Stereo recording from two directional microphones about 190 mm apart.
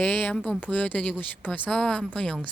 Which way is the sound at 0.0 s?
10° left (ahead or behind).